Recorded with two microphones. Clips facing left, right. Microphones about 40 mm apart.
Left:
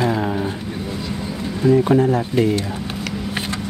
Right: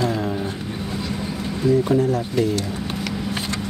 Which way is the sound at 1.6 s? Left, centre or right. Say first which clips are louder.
Left 3 dB; left.